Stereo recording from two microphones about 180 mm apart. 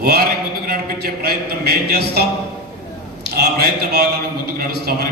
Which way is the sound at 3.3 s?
60° right (ahead or behind).